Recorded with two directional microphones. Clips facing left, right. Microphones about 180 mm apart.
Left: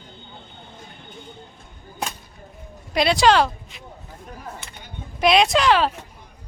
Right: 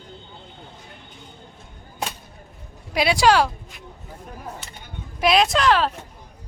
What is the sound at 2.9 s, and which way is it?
Speech, 10° right (ahead or behind).